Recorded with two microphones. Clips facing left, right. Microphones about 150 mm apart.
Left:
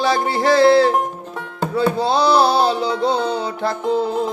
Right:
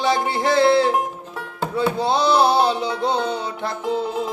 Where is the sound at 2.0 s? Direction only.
20° right (ahead or behind).